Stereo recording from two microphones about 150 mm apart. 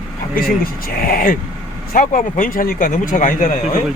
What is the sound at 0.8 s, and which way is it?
Speech, 75° left (ahead or behind).